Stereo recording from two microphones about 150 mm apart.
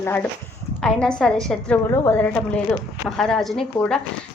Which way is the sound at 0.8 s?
5° left (ahead or behind).